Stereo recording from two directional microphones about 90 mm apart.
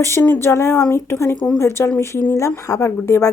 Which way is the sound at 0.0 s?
25° left (ahead or behind).